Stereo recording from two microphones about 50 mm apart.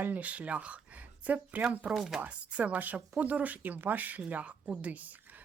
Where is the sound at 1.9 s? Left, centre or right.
Centre.